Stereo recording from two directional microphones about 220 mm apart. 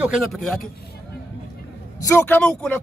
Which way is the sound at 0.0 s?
Centre (ahead or behind).